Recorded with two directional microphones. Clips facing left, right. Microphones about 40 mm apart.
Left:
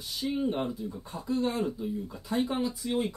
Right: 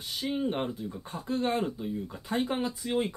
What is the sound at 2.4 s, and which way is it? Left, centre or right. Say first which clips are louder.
Speech: even; right.